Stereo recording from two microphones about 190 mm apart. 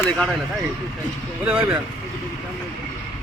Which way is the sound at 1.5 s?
5° right (ahead or behind).